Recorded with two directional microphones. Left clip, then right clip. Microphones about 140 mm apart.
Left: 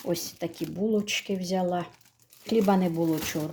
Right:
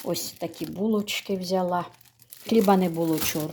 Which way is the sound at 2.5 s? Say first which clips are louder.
Right 3 dB; 20° right (ahead or behind).